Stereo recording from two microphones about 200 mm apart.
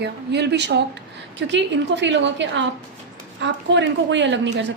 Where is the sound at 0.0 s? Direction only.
60° right (ahead or behind).